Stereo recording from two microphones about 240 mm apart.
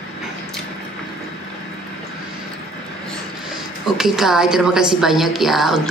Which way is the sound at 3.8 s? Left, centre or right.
Centre.